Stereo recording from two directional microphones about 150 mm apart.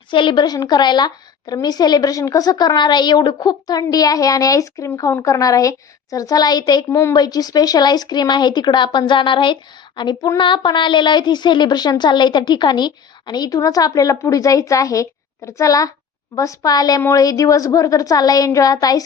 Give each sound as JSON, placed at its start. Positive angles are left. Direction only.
{"t": 0.1, "sound": "a woman's voice", "side_deg": 35}